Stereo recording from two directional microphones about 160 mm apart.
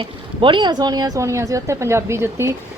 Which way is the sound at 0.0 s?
30° right (ahead or behind).